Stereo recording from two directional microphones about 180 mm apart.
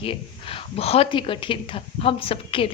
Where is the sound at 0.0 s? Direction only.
30° left (ahead or behind).